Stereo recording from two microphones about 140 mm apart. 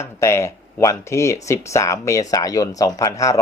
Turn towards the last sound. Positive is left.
turn(degrees=25)  # may be behind; listen again after turning